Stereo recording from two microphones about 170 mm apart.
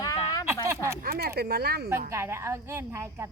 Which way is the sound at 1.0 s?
65° right (ahead or behind).